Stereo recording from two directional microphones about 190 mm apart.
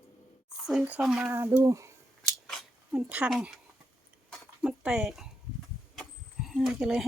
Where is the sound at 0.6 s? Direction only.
5° right (ahead or behind).